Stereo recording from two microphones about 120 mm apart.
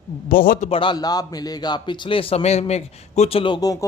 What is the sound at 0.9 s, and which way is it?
Speech, 35° left (ahead or behind).